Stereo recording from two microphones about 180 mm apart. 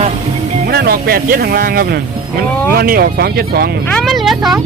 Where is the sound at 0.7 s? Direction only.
60° right (ahead or behind).